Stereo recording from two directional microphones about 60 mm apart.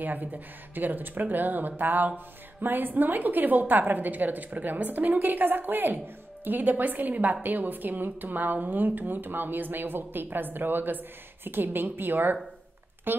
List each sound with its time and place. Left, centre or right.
0.0 s a woman's voice: right